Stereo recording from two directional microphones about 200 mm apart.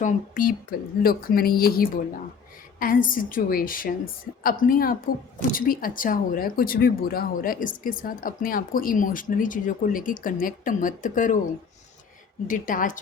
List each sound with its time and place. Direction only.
0.0 s speech: 45° left (ahead or behind)
12.5 s a woman's voice: 40° left (ahead or behind)